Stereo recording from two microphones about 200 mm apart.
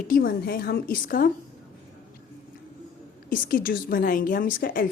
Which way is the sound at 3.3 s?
45° left (ahead or behind).